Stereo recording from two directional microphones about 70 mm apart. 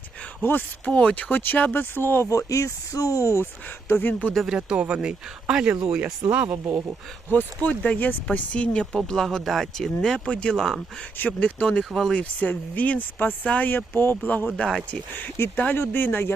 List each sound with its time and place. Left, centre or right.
0.9 s speech: centre; by 2.4 s left
2.5 s speech: left
4.0 s speech: left
4.5 s speech: centre
6.5 s speech: right
7.3 s speech: left; by 12.2 s centre
12.2 s speech: left
14.5 s speech: centre
15.5 s speech: left